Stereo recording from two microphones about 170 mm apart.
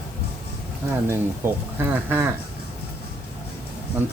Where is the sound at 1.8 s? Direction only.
10° right (ahead or behind).